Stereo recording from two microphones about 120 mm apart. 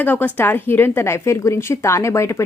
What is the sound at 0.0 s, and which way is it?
A woman's voice, 15° left (ahead or behind).